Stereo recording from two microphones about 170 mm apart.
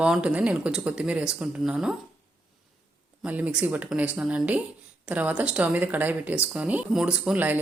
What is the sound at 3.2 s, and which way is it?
Speech, 10° right (ahead or behind).